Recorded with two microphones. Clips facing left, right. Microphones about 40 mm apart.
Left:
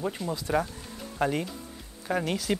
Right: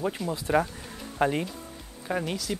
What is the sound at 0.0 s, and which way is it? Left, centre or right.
Speech, centre.